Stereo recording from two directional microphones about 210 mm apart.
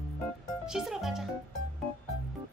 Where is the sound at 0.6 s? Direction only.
Centre (ahead or behind).